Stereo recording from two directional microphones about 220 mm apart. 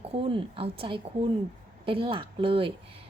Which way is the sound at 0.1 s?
25° right (ahead or behind).